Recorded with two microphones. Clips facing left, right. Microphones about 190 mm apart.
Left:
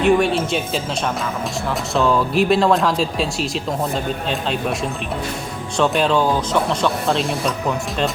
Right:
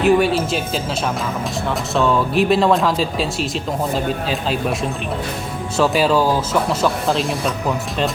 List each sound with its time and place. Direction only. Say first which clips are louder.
0.0 s speech: right 1 dB; centre (ahead or behind)
2.0 s speech: even; centre (ahead or behind)
5.7 s speech: right 1 dB; 5° right (ahead or behind)